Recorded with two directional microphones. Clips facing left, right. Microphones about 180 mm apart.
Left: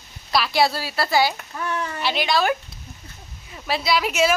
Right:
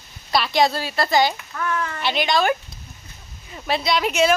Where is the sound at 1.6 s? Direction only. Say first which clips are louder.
Right 2 dB; 20° left (ahead or behind).